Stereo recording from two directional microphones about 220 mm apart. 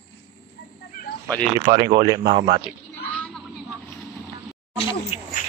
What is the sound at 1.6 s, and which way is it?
Speech, 20° right (ahead or behind).